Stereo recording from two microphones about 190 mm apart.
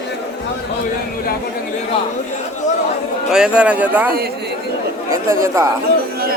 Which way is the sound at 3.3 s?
5° right (ahead or behind).